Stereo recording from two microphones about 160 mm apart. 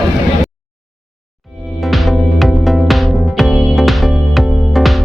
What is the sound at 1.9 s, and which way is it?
Music, centre (ahead or behind).